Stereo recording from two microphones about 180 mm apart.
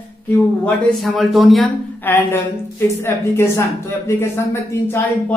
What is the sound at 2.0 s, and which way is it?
Speech, 10° left (ahead or behind).